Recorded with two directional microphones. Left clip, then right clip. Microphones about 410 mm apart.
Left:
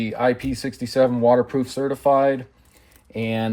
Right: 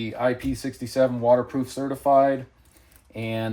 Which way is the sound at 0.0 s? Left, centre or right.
Centre.